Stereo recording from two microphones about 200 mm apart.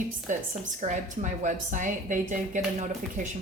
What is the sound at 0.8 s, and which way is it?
A woman's voice, 35° right (ahead or behind).